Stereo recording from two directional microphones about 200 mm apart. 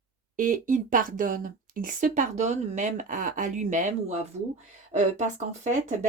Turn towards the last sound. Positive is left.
turn(degrees=-35)  # may be behind; listen again after turning